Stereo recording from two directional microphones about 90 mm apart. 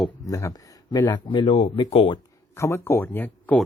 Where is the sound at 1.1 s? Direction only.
60° left (ahead or behind); by 1.7 s 90° left.